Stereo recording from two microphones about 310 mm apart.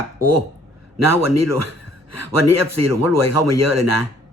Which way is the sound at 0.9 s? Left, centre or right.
Right.